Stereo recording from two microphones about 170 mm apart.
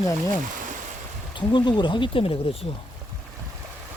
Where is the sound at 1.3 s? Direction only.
30° left (ahead or behind).